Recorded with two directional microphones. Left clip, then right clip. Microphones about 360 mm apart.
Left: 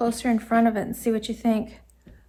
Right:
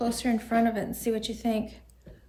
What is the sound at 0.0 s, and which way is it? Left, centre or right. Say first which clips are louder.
A woman's voice: left 4 dB; centre.